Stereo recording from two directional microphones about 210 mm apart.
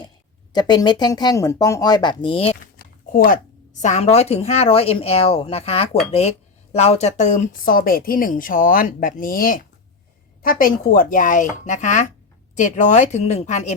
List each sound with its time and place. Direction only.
0.5 s speech: 20° left (ahead or behind)
2.7 s a sound: 40° left (ahead or behind)
3.8 s speech: 35° left (ahead or behind)